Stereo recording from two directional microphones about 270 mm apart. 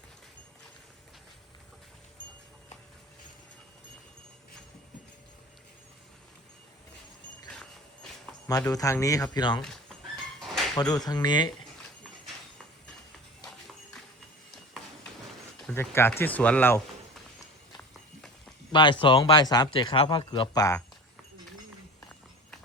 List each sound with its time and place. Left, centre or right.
8.4 s speech: centre
10.8 s speech: centre
15.6 s speech: centre
18.7 s speech: centre